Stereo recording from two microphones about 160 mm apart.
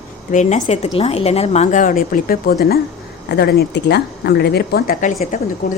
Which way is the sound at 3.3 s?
90° left.